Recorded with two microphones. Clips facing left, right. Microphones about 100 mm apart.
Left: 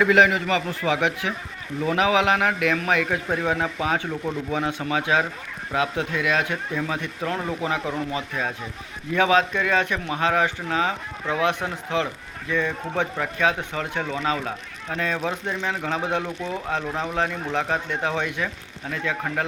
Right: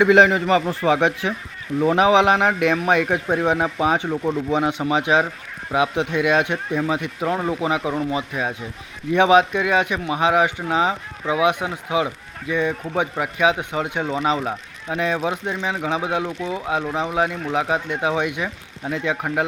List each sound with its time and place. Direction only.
0.0 s a man's voice: 30° right (ahead or behind)